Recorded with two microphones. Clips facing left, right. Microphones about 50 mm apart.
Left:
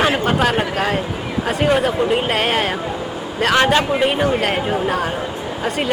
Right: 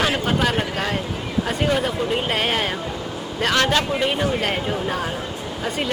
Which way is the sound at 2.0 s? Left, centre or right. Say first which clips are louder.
Left 5 dB; centre.